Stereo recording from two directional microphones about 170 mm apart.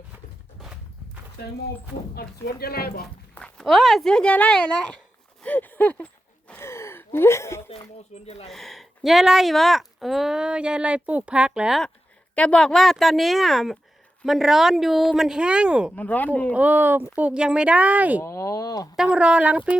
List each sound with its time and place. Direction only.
2.1 s speech: 65° left (ahead or behind)
3.3 s speech: 5° left (ahead or behind)
5.4 s a sound: 10° left (ahead or behind)
6.5 s gasp: 15° left (ahead or behind)
8.1 s speech: 40° left (ahead or behind)
8.4 s speech: centre (ahead or behind)
12.3 s speech: 5° left (ahead or behind)
16.0 s speech: 10° left (ahead or behind)
16.6 s speech: 10° right (ahead or behind)
18.2 s speech: 15° left (ahead or behind)
18.9 s speech: 5° right (ahead or behind)